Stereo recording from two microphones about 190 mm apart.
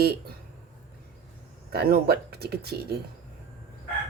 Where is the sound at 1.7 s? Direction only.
55° right (ahead or behind).